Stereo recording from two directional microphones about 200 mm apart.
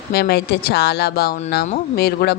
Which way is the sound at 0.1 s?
50° left (ahead or behind).